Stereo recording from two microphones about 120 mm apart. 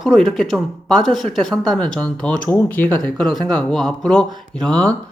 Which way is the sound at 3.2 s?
Centre (ahead or behind).